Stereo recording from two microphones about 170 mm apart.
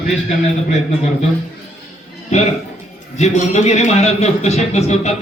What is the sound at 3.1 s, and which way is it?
A man's voice, 40° left (ahead or behind).